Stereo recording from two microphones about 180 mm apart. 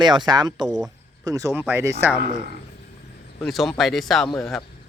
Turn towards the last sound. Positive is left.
turn(degrees=20)  # may be behind; listen again after turning